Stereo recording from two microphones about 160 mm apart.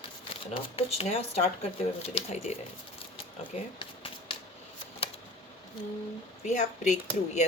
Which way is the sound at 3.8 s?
35° left (ahead or behind).